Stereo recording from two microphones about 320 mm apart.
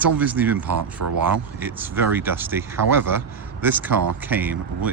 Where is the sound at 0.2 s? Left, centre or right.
Centre.